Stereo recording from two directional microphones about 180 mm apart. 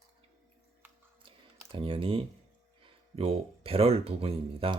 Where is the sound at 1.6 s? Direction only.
30° right (ahead or behind).